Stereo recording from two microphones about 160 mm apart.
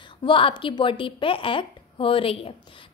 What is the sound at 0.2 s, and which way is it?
A woman's voice, 35° left (ahead or behind).